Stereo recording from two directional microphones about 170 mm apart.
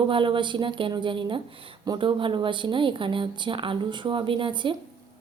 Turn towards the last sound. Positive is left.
turn(degrees=-30)  # may be behind; listen again after turning